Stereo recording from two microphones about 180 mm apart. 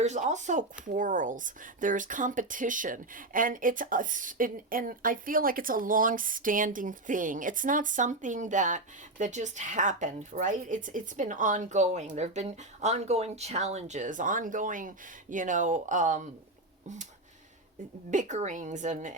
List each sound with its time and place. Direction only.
0.0 s speech: 40° right (ahead or behind)
18.1 s speech: 40° right (ahead or behind)